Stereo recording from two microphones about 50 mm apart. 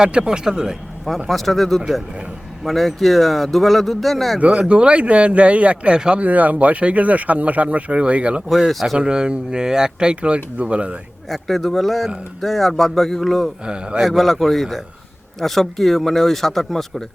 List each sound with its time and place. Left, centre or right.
0.0 s speech: centre
1.0 s speech: centre
4.4 s speech: right
6.2 s speech: right
8.4 s speech: centre
9.0 s speech: centre
11.3 s speech: centre